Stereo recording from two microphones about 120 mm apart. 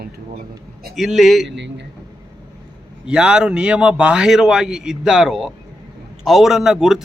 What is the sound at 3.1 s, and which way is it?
A man's voice, 5° right (ahead or behind).